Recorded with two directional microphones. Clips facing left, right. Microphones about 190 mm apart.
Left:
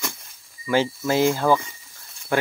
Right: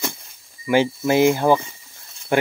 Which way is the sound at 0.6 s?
15° right (ahead or behind).